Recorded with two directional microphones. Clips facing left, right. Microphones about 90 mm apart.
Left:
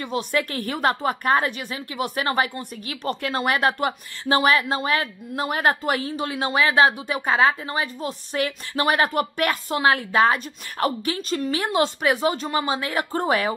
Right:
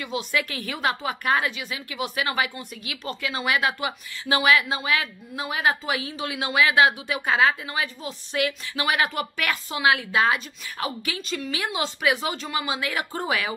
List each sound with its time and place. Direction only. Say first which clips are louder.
0.0 s a woman's voice: left 3 dB; 40° left (ahead or behind)